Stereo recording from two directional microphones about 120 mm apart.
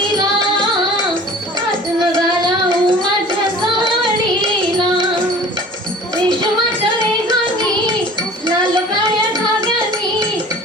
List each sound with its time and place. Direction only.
0.0 s music: 40° right (ahead or behind)
2.4 s child singing: 40° right (ahead or behind)
8.4 s wind chime: 40° right (ahead or behind)